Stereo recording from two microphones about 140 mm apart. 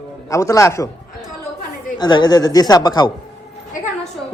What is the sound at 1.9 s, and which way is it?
Speech, 30° left (ahead or behind).